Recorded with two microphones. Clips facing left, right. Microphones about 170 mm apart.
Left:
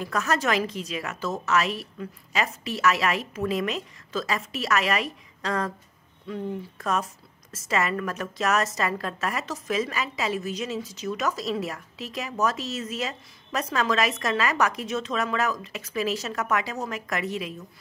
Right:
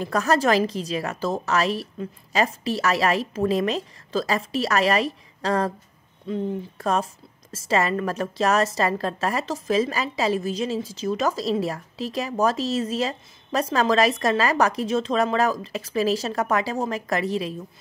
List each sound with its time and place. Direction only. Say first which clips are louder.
0.0 s speech: right 5 dB; 35° right (ahead or behind)